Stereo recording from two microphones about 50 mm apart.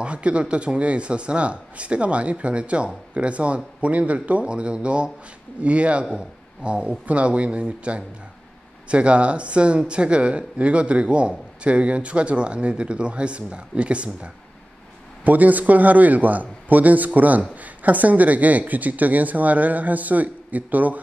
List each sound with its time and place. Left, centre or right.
0.0 s speech: right
15.2 s speech: right